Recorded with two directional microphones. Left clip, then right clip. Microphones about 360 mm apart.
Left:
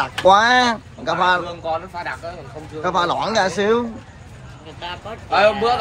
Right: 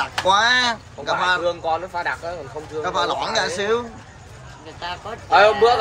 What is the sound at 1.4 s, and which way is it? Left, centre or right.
Speech, right.